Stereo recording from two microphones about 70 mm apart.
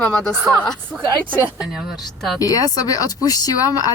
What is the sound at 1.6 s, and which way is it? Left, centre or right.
Speech, centre.